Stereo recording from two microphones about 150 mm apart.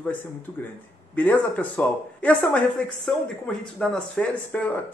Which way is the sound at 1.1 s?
10° left (ahead or behind).